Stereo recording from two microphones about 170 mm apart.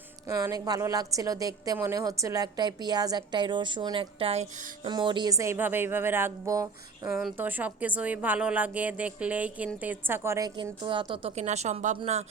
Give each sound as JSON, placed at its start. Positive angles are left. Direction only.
{"t": 0.3, "sound": "a woman's voice", "side_deg": -20}
{"t": 4.8, "sound": "speech", "side_deg": -25}
{"t": 7.2, "sound": "a woman's voice", "side_deg": -5}